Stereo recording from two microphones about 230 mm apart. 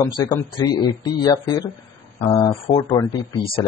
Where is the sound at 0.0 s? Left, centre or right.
Centre.